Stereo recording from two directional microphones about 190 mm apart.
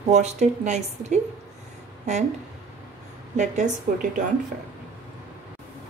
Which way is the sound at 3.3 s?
40° right (ahead or behind).